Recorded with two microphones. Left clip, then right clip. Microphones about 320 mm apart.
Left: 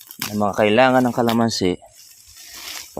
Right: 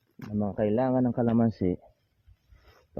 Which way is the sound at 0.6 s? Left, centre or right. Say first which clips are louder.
Left 12 dB; left.